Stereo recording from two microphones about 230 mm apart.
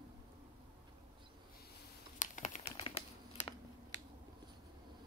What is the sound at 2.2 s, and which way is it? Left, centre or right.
Crumpling, left.